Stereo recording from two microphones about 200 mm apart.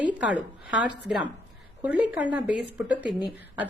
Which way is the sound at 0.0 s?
5° right (ahead or behind).